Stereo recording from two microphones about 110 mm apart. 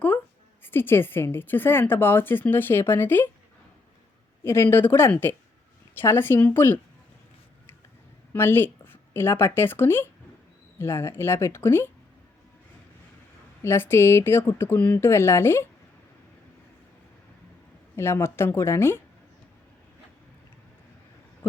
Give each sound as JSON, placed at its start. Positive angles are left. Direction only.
{"t": 0.6, "sound": "a woman's voice", "side_deg": 20}
{"t": 4.4, "sound": "a woman's voice", "side_deg": 20}
{"t": 8.3, "sound": "a woman's voice", "side_deg": 20}
{"t": 13.6, "sound": "a woman's voice", "side_deg": 20}
{"t": 17.9, "sound": "a woman's voice", "side_deg": 25}